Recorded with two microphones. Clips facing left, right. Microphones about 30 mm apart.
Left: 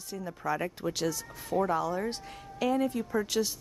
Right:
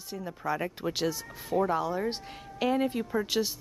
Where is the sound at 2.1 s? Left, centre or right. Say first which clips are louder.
Right 2 dB; right.